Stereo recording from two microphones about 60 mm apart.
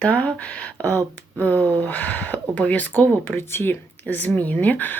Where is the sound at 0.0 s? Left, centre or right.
Left.